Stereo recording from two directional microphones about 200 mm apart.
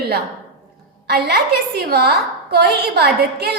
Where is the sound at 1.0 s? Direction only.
55° right (ahead or behind).